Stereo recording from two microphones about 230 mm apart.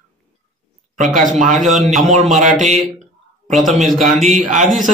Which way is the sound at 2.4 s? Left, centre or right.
Right.